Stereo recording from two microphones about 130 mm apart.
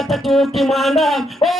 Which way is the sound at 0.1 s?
Centre (ahead or behind).